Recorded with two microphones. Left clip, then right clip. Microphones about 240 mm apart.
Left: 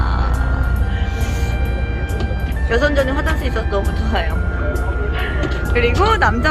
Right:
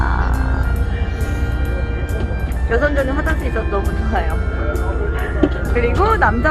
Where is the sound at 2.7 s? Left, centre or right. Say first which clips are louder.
Left 1 dB; centre.